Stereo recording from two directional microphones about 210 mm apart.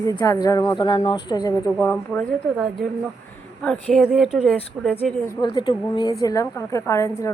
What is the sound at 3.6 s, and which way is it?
A woman's voice, 5° left (ahead or behind).